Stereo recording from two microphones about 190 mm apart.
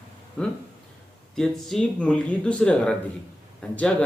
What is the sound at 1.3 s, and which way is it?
Speech, 5° left (ahead or behind).